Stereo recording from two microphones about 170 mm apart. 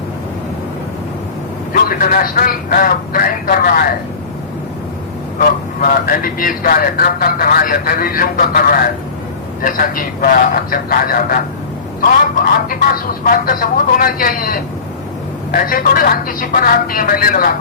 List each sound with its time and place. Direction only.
1.7 s speech: 55° left (ahead or behind)
5.4 s speech: 55° left (ahead or behind)
13.2 s speech: 60° left (ahead or behind)